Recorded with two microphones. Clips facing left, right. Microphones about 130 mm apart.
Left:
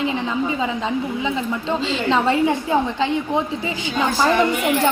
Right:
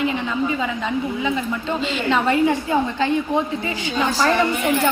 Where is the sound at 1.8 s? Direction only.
25° left (ahead or behind).